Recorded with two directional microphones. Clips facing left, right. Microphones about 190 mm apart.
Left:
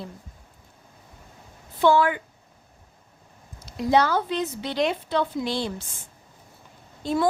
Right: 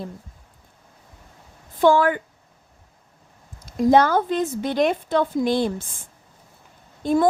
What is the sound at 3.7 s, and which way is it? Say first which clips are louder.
A woman's voice: right 5 dB; 50° right (ahead or behind).